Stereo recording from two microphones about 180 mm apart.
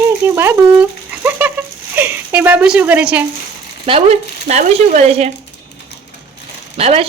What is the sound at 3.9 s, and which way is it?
Speech, 35° right (ahead or behind).